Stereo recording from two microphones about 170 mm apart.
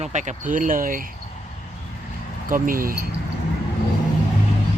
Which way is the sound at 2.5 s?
55° right (ahead or behind).